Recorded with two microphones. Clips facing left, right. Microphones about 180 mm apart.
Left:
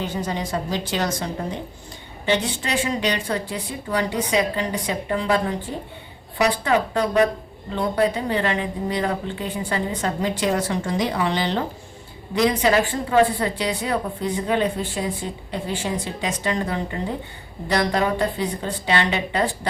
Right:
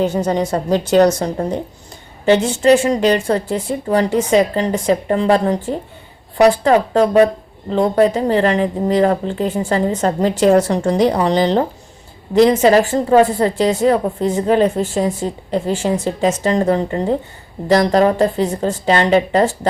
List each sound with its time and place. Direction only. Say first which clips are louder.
0.3 s a woman's voice: right 9 dB; 40° right (ahead or behind)